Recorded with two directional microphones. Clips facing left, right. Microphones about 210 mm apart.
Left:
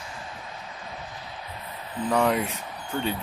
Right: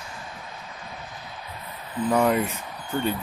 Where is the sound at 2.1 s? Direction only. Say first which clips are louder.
Right 2 dB; 5° right (ahead or behind).